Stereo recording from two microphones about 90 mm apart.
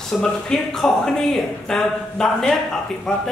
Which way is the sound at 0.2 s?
5° left (ahead or behind).